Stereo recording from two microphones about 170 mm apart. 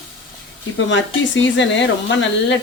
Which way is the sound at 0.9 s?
90° left.